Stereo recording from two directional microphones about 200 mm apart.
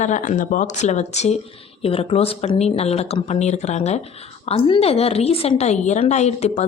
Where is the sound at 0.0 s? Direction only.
40° left (ahead or behind).